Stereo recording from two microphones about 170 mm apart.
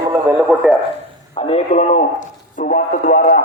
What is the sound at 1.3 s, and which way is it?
Speech, 35° left (ahead or behind).